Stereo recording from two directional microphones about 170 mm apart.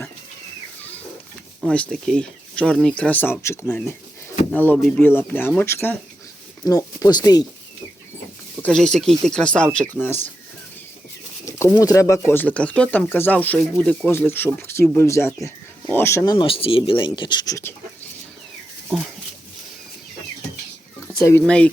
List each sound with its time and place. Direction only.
1.6 s speech: 5° left (ahead or behind); by 7.4 s 25° left (ahead or behind)
8.6 s speech: 5° left (ahead or behind)
11.4 s bird: 15° left (ahead or behind)
11.8 s speech: 20° left (ahead or behind)
18.9 s speech: 5° right (ahead or behind)
21.2 s speech: 10° left (ahead or behind)